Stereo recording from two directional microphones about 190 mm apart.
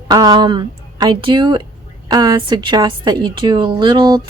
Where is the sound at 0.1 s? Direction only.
20° right (ahead or behind).